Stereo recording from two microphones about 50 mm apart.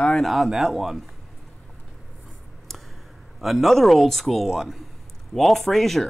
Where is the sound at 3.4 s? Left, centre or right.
Centre.